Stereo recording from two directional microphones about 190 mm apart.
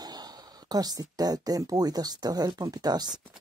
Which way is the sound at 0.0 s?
20° right (ahead or behind).